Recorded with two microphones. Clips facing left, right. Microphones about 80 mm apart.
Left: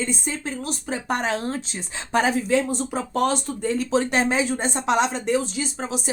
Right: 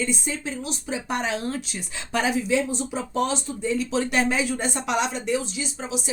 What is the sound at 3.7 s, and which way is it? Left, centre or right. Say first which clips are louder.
Speech: left 2 dB; left.